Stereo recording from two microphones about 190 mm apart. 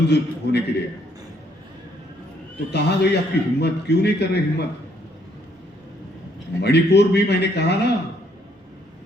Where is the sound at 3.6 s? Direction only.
60° left (ahead or behind).